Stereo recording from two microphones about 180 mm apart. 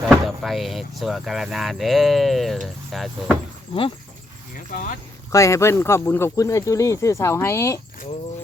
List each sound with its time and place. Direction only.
0.1 s speech: centre (ahead or behind)
4.7 s speech: 50° left (ahead or behind)
5.3 s speech: 15° left (ahead or behind)